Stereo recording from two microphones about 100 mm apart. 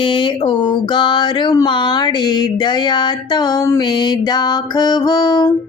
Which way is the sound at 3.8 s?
50° left (ahead or behind).